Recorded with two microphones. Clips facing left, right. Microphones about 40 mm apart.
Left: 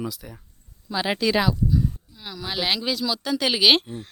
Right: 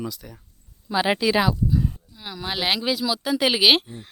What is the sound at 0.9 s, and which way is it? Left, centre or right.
Speech, centre.